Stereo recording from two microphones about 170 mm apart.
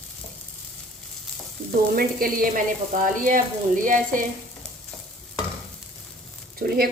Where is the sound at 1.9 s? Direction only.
60° right (ahead or behind).